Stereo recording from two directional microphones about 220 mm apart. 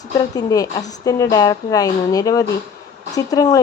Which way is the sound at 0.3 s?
15° left (ahead or behind).